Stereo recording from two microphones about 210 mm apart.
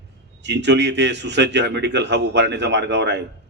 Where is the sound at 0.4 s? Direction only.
55° right (ahead or behind).